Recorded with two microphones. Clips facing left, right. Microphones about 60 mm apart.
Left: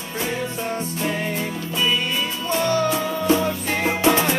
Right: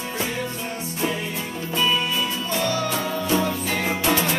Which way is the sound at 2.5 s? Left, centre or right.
Left.